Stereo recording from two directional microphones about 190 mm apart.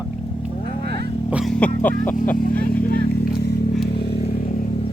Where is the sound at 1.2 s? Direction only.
5° right (ahead or behind).